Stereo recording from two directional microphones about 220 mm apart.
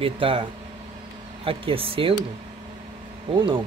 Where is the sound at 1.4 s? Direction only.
25° right (ahead or behind).